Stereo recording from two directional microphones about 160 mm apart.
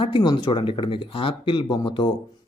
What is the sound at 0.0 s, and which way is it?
Speech, 30° left (ahead or behind).